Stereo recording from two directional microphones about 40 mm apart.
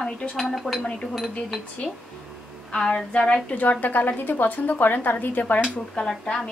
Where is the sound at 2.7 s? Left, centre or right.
Left.